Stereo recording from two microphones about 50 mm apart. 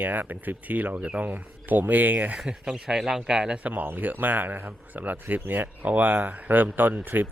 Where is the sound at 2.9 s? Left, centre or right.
Centre.